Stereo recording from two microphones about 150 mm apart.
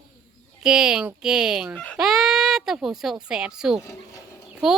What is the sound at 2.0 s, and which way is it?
Baby cry, centre (ahead or behind).